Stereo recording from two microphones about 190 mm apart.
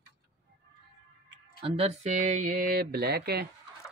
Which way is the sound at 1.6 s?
30° right (ahead or behind).